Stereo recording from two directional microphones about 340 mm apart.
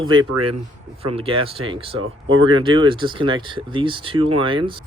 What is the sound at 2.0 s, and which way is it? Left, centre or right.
Speech, right.